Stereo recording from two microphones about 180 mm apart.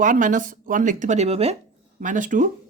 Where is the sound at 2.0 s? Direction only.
45° right (ahead or behind).